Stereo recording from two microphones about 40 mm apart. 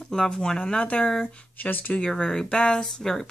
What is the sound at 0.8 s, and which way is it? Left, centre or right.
Speech, left.